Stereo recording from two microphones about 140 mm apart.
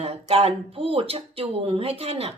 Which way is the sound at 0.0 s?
45° right (ahead or behind).